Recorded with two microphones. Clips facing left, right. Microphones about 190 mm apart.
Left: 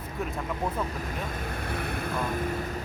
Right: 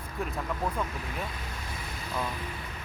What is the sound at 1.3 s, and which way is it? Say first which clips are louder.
Vehicle: left 7 dB; 55° left (ahead or behind).